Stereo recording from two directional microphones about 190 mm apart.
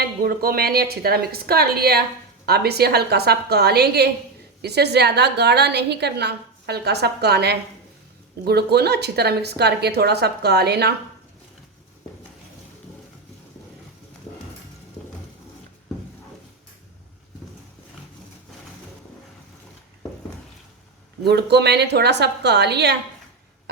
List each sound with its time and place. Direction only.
0.0 s a woman's voice: 50° right (ahead or behind)
21.2 s a woman's voice: 60° right (ahead or behind)